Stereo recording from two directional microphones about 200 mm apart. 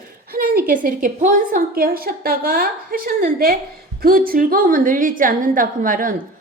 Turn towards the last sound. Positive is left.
turn(degrees=-45)  # may be behind; listen again after turning